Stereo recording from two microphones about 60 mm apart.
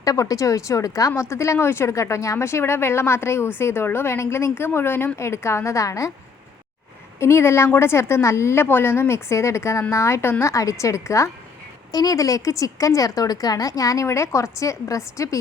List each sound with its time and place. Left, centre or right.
0.0 s a woman's voice: left
1.1 s speech: left
7.2 s speech: left
8.6 s speech: left
10.4 s a woman's voice: left
11.9 s a woman's voice: left